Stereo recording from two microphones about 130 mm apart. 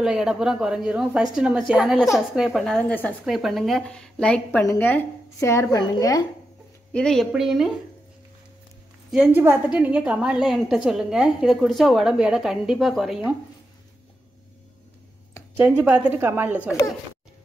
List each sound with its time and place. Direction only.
0.0 s a woman's voice: 5° right (ahead or behind); by 3.2 s 10° left (ahead or behind)
3.3 s a woman's voice: centre (ahead or behind); by 6.2 s 30° left (ahead or behind)
6.9 s a woman's voice: 5° left (ahead or behind)
9.1 s a woman's voice: 5° right (ahead or behind)
15.5 s a woman's voice: 10° right (ahead or behind)